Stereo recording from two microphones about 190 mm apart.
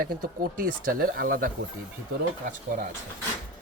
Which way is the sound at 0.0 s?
50° right (ahead or behind).